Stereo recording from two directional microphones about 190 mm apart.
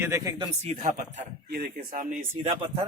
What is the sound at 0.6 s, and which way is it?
Speech, 35° right (ahead or behind).